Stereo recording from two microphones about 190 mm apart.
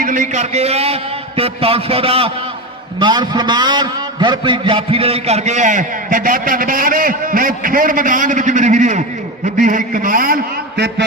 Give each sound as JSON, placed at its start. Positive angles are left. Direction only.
{"t": 0.0, "sound": "a man's voice", "side_deg": -40}